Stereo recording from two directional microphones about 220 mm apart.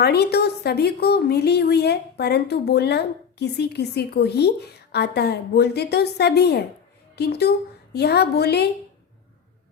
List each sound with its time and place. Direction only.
0.0 s speech: 50° left (ahead or behind)